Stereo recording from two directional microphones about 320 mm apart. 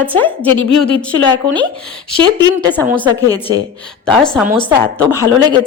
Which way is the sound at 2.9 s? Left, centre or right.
Centre.